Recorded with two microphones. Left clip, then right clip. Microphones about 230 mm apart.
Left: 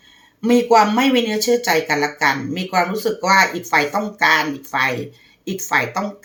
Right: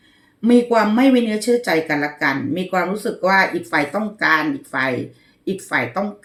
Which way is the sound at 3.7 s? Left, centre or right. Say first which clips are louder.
Left 3 dB; left.